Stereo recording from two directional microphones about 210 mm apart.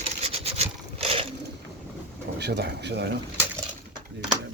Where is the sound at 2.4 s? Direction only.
50° right (ahead or behind).